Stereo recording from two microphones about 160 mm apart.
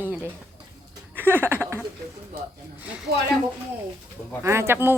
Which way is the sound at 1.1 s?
10° right (ahead or behind).